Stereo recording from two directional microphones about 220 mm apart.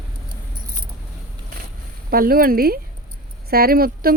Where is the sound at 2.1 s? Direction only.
40° right (ahead or behind).